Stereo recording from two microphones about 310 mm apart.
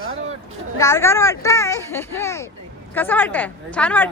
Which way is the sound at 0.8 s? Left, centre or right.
Centre.